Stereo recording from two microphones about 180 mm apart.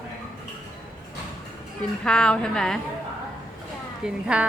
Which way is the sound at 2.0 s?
5° left (ahead or behind).